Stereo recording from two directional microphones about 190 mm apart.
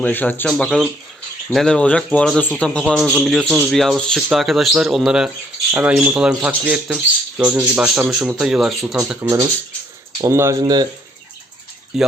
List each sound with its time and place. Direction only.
0.0 s speech: 10° left (ahead or behind); by 10.8 s 20° right (ahead or behind)
11.9 s speech: centre (ahead or behind)